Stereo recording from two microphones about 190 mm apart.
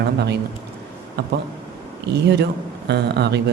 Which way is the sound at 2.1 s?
60° right (ahead or behind).